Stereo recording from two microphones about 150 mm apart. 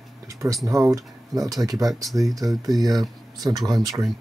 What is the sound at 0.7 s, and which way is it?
Speech, 20° right (ahead or behind).